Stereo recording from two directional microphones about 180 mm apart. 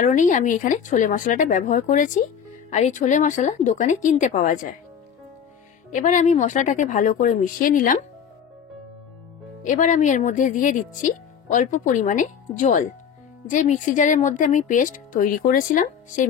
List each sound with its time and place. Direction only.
0.0 s speech: 45° left (ahead or behind)
5.9 s speech: 40° left (ahead or behind)
9.6 s speech: 45° left (ahead or behind)